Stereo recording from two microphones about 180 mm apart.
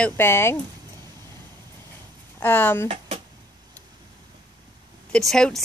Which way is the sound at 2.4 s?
10° left (ahead or behind).